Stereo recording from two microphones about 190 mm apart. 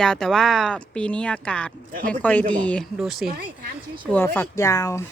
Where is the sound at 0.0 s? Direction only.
5° left (ahead or behind).